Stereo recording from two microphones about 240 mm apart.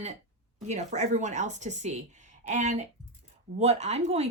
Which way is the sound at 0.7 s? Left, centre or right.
Right.